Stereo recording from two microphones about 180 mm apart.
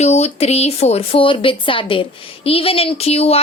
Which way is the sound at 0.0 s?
35° left (ahead or behind).